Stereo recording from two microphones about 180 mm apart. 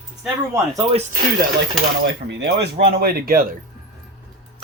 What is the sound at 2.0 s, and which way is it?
Speech, 70° right (ahead or behind).